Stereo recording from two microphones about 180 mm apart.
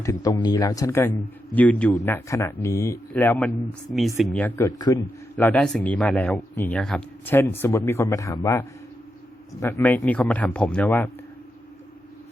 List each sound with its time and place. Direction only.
0.0 s speech: 20° left (ahead or behind)